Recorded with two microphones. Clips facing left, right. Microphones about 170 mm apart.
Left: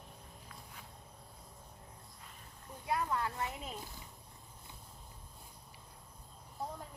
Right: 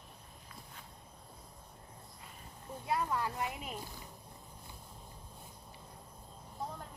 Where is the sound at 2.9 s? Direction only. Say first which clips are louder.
Right 1 dB; 20° right (ahead or behind).